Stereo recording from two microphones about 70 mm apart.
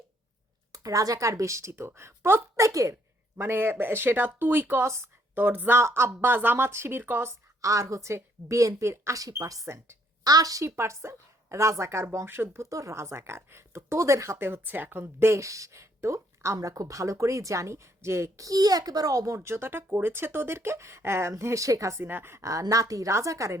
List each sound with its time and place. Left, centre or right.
0.7 s a woman's voice: right
2.6 s speech: right
3.3 s speech: right
5.4 s speech: right
5.8 s a woman's voice: right
7.3 s speech: right
10.2 s a woman's voice: right
10.8 s a woman's voice: right
12.6 s speech: right
22.0 s a woman's voice: right
22.7 s speech: right